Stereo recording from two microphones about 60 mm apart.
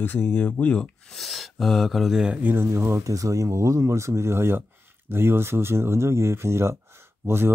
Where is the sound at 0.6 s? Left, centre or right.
Centre.